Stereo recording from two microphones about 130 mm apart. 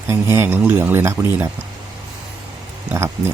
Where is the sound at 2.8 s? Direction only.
20° right (ahead or behind).